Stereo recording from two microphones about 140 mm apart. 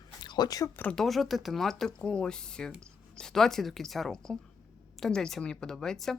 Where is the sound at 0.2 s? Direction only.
30° left (ahead or behind).